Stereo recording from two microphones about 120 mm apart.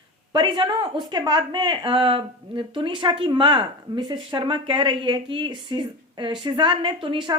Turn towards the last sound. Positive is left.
turn(degrees=-45)  # may be behind; listen again after turning